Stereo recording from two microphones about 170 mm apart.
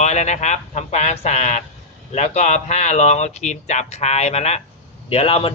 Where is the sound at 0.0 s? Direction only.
40° left (ahead or behind).